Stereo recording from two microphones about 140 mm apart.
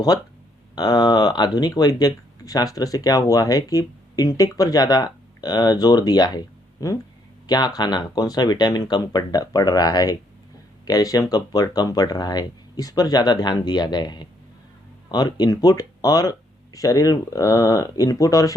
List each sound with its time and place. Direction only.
0.8 s speech: 30° left (ahead or behind)